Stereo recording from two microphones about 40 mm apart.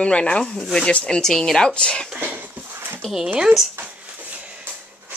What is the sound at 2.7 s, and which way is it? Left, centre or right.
Dog, right.